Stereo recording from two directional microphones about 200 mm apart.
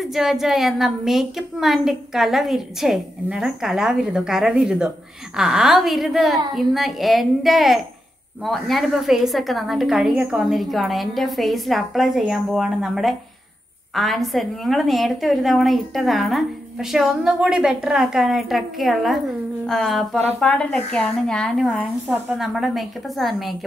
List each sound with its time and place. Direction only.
0.0 s a woman's voice: centre (ahead or behind)